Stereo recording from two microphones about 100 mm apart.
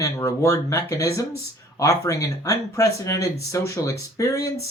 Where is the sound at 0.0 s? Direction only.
30° left (ahead or behind).